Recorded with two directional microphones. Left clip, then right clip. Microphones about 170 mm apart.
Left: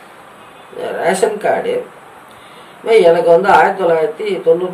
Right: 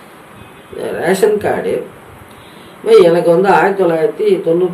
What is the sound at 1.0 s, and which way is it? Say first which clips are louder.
Speech: right 2 dB; 5° left (ahead or behind).